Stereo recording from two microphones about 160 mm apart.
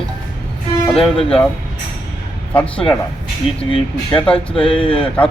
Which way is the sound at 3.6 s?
35° left (ahead or behind).